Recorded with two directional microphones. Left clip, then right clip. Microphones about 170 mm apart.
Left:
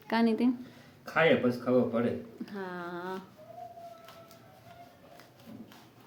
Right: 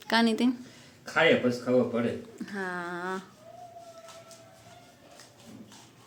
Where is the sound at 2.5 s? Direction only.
10° right (ahead or behind).